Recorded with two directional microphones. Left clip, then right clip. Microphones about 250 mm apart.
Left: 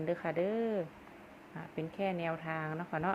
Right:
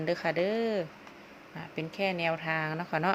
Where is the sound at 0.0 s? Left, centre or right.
Centre.